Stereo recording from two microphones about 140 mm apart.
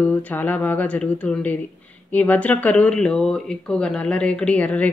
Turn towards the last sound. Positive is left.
turn(degrees=10)  # may be behind; listen again after turning